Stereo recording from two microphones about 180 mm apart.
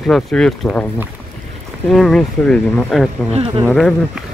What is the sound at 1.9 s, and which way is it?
Speech, centre (ahead or behind).